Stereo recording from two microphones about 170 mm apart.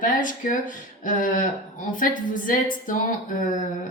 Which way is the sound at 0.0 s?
50° left (ahead or behind).